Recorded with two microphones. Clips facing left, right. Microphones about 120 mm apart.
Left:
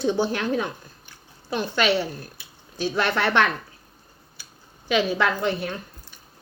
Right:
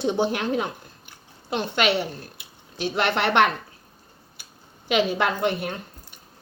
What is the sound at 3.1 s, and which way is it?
Speech, 25° right (ahead or behind).